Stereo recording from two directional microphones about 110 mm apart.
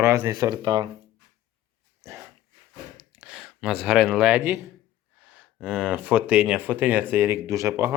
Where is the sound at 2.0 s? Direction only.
25° right (ahead or behind).